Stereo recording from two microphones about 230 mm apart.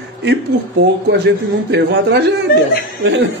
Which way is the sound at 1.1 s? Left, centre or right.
Right.